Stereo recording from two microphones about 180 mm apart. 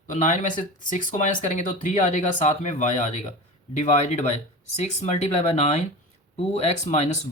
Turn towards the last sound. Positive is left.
turn(degrees=40)  # may be behind; listen again after turning